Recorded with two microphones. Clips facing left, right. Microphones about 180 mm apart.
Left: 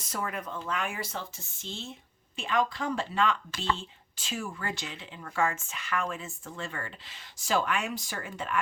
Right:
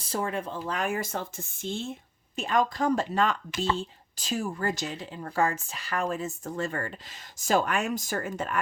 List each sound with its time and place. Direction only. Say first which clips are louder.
0.0 s speech: right 5 dB; 30° right (ahead or behind)